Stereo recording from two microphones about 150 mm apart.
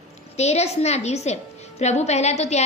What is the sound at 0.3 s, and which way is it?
A woman's voice, 45° left (ahead or behind).